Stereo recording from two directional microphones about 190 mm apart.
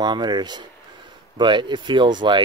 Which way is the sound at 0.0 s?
20° right (ahead or behind).